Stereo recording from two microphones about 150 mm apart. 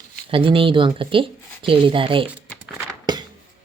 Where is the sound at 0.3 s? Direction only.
35° right (ahead or behind).